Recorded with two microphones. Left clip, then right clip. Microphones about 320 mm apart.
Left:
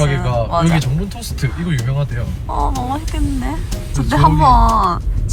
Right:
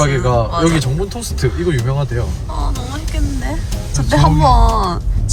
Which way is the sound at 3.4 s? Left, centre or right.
Centre.